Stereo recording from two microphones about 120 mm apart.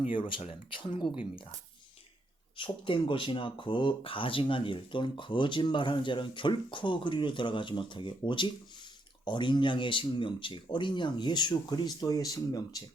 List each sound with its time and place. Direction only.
0.1 s speech: 45° left (ahead or behind)
2.6 s speech: 45° left (ahead or behind)
9.2 s speech: 40° left (ahead or behind)